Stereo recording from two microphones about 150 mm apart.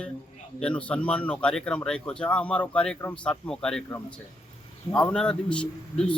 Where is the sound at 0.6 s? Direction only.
10° left (ahead or behind).